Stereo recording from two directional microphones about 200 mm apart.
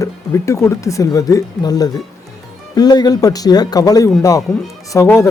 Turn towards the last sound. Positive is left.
turn(degrees=15)  # may be behind; listen again after turning